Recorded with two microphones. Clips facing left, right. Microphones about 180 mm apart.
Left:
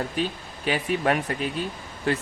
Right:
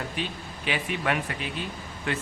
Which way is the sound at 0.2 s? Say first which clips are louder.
Left 5 dB; 40° left (ahead or behind).